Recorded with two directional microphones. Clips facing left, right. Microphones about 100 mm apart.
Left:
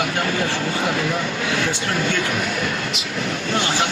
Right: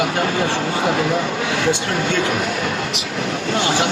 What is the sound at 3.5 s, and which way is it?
Speech, 25° right (ahead or behind).